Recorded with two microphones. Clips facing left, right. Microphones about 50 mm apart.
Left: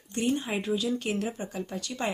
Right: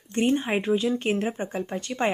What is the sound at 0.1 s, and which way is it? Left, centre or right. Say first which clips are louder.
Speech: right 5 dB; right.